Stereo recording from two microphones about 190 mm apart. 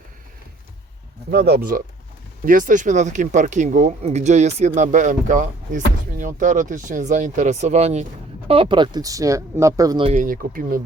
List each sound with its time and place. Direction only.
1.3 s speech: 55° right (ahead or behind); by 10.1 s 20° right (ahead or behind)
10.1 s speech: 45° right (ahead or behind)